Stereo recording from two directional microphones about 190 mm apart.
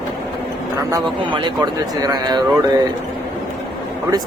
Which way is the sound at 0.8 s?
20° right (ahead or behind).